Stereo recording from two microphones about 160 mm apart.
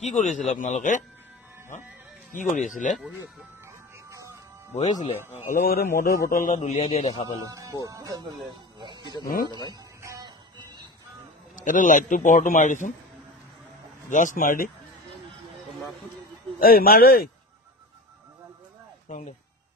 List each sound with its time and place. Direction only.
0.0 s a man's voice: 50° left (ahead or behind)
2.3 s a man's voice: 50° left (ahead or behind)
3.6 s music: 20° right (ahead or behind)
4.7 s speech: 45° left (ahead or behind)
5.2 s a man's voice: 15° right (ahead or behind)
5.5 s a man's voice: 70° left (ahead or behind); by 7.1 s 45° left (ahead or behind)
7.1 s speech: 30° left (ahead or behind)
7.4 s speech: 20° right (ahead or behind)
9.7 s music: 25° right (ahead or behind)
11.5 s a man's voice: 55° left (ahead or behind)
14.0 s a man's voice: 55° left (ahead or behind)
16.6 s speech: 70° left (ahead or behind)